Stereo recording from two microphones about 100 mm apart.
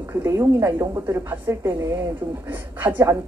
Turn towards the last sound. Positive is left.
turn(degrees=-25)  # may be behind; listen again after turning